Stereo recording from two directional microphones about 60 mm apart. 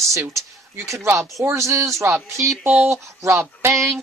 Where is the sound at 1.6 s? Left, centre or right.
Right.